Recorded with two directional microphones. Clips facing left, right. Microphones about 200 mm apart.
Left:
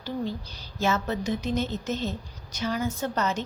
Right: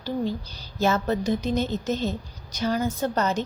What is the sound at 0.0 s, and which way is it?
A woman's voice, 40° right (ahead or behind).